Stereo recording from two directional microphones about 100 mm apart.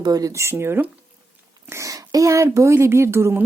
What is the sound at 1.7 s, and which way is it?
Speech, 35° right (ahead or behind).